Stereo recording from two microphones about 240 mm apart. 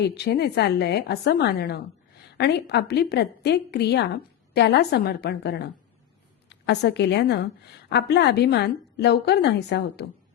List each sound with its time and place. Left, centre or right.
0.0 s a woman's voice: left